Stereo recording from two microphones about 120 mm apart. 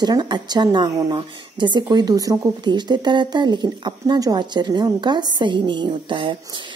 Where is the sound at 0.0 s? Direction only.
35° right (ahead or behind).